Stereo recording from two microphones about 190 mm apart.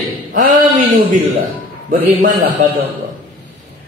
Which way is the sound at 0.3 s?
45° right (ahead or behind).